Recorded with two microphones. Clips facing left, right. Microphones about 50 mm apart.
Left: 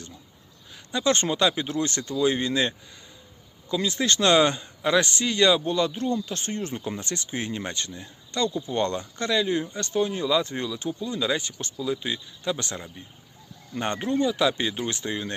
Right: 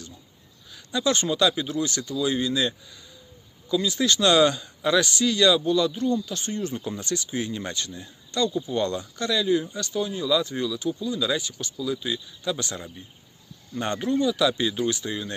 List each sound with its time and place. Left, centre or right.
0.7 s speech: left